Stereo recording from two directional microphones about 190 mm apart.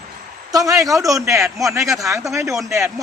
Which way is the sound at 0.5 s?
20° right (ahead or behind).